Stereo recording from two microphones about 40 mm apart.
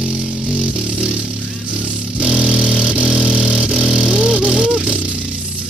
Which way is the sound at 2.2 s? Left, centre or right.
Right.